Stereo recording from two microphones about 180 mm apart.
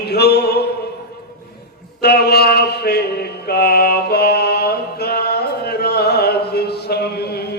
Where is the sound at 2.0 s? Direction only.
60° left (ahead or behind).